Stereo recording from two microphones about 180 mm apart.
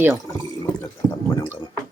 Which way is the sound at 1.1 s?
20° left (ahead or behind).